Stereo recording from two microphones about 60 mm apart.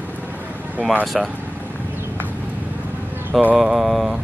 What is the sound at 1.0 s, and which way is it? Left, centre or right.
Speech, centre.